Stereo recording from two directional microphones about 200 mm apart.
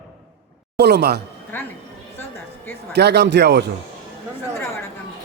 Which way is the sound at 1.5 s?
10° left (ahead or behind).